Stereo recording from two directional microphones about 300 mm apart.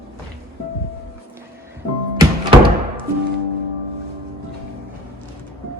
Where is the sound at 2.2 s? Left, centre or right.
Centre.